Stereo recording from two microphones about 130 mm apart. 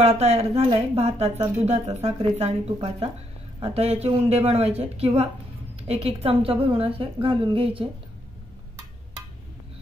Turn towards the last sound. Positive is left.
turn(degrees=-45)  # may be behind; listen again after turning